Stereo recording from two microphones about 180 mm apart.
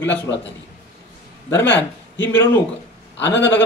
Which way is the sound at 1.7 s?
10° left (ahead or behind).